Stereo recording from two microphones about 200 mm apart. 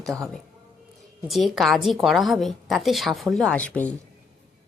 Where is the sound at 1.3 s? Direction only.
Centre (ahead or behind).